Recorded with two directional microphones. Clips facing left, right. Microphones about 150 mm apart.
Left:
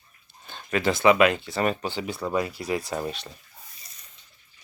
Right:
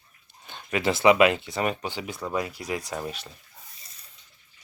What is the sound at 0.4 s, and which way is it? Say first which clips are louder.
Speech: left 1 dB; 20° right (ahead or behind).